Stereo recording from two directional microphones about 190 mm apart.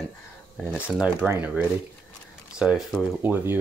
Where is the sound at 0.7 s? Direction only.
5° right (ahead or behind).